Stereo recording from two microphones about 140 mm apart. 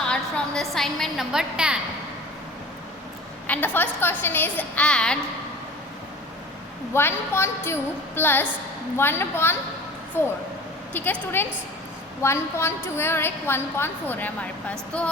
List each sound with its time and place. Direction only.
0.1 s a woman's voice: 5° left (ahead or behind)
3.4 s a woman's voice: 10° left (ahead or behind)
6.9 s a woman's voice: 15° left (ahead or behind)